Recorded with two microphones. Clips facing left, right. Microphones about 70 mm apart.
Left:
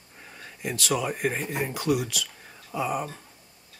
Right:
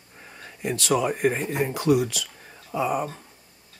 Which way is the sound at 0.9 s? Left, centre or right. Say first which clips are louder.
Right 5 dB; centre.